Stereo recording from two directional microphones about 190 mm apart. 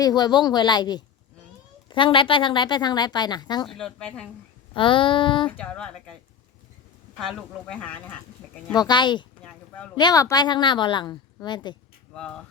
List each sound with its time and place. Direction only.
0.0 s speech: 20° left (ahead or behind)
3.8 s speech: 5° left (ahead or behind)
4.7 s speech: 25° left (ahead or behind)
5.5 s speech: 5° left (ahead or behind)
7.2 s speech: 5° left (ahead or behind)
8.7 s speech: 20° left (ahead or behind)
9.4 s a sound: 5° left (ahead or behind)
9.9 s speech: 20° left (ahead or behind)